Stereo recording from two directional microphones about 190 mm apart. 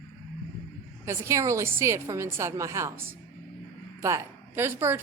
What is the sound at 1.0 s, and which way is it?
A woman's voice, 15° right (ahead or behind).